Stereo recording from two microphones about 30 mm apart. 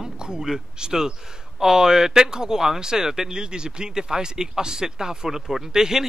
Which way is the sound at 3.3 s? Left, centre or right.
Right.